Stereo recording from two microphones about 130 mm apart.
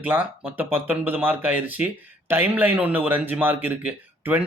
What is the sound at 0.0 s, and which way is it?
Speech, 10° right (ahead or behind).